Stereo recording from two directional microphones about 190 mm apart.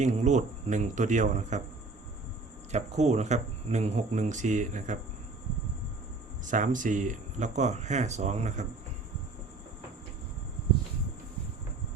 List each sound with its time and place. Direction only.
0.0 s speech: 40° right (ahead or behind)
2.7 s speech: 35° right (ahead or behind)
6.4 s speech: 40° right (ahead or behind)